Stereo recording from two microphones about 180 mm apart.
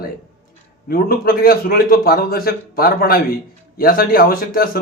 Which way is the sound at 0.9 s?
55° left (ahead or behind).